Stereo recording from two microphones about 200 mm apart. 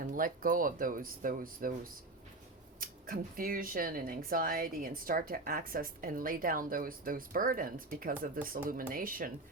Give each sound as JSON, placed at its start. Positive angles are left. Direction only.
{"t": 0.0, "sound": "speech", "side_deg": -45}